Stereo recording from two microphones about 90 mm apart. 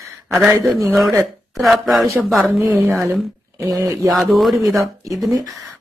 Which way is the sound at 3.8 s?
35° right (ahead or behind).